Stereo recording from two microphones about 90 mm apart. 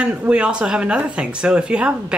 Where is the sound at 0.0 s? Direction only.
15° right (ahead or behind).